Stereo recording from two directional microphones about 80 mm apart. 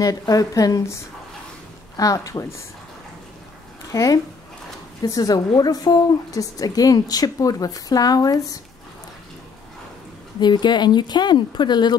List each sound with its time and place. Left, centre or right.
0.0 s speech: left
2.0 s speech: left
3.9 s speech: left
10.4 s speech: left